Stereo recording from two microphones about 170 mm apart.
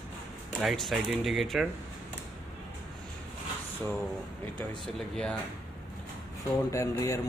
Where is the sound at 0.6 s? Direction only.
Centre (ahead or behind).